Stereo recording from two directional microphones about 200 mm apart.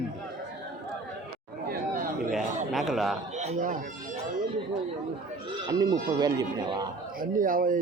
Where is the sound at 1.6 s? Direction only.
45° right (ahead or behind).